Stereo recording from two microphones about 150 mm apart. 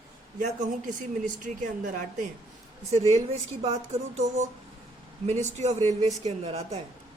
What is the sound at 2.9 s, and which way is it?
Speech, 45° right (ahead or behind).